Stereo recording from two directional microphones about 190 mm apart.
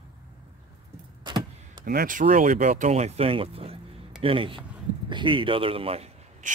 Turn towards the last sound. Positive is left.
turn(degrees=-35)  # may be behind; listen again after turning